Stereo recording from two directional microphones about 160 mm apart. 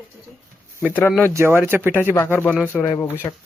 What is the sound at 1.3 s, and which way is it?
Speech, 15° right (ahead or behind).